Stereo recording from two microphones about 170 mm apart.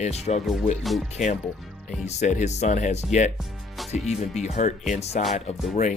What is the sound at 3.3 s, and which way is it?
Music, centre (ahead or behind).